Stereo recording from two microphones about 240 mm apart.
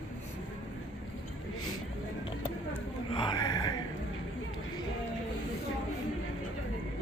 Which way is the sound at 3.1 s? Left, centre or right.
Centre.